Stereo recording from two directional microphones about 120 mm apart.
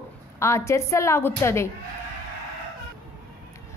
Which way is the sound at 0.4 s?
25° left (ahead or behind).